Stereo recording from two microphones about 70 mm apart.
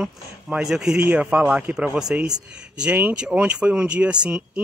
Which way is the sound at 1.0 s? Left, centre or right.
Right.